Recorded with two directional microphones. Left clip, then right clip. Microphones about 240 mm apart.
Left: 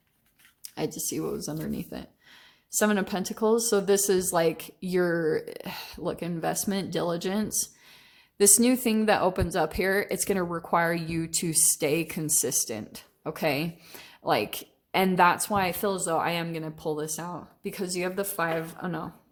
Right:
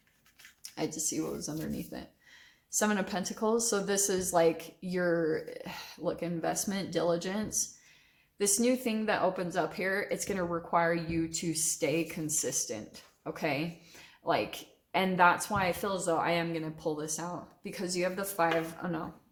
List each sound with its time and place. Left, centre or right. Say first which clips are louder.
1.1 s a woman's voice: left 4 dB; left